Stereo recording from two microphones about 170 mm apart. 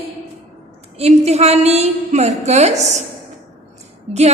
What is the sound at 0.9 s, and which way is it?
Speech, 40° right (ahead or behind).